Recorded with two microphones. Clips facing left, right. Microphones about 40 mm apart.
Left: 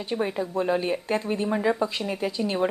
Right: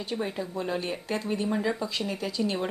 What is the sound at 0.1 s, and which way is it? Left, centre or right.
Speech, left.